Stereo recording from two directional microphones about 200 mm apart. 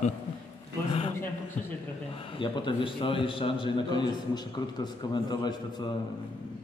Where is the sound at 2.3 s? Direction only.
25° left (ahead or behind).